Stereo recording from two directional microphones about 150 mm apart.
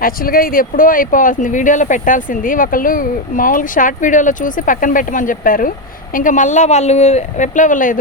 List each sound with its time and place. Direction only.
0.0 s speech: 75° left (ahead or behind)